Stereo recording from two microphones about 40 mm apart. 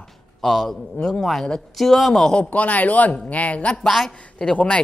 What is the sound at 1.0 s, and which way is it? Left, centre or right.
Speech, left.